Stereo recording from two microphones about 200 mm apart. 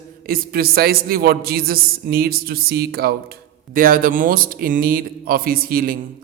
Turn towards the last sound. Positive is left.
turn(degrees=-45)  # may be behind; listen again after turning